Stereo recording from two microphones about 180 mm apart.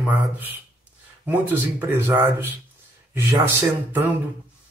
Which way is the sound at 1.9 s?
10° right (ahead or behind).